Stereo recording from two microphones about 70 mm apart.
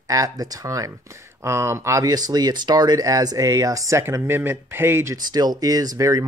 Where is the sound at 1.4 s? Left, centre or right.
Right.